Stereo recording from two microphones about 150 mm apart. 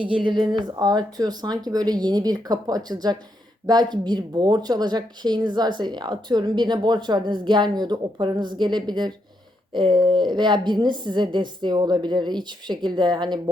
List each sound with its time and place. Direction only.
0.0 s speech: 35° right (ahead or behind)